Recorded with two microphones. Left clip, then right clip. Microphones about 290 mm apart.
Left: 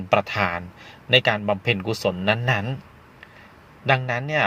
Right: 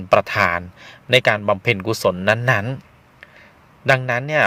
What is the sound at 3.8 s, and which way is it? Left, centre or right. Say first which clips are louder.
Speech: right 4 dB; right.